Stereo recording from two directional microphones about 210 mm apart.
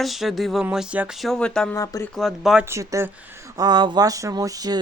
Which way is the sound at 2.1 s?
Centre (ahead or behind).